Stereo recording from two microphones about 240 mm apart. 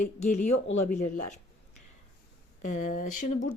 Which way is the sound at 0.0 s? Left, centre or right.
Left.